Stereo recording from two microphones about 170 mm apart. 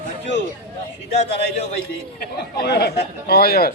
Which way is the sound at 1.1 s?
40° left (ahead or behind).